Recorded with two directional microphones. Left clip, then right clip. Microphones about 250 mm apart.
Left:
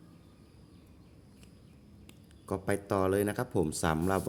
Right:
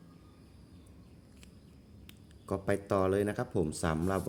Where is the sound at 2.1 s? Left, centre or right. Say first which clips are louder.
Even; centre.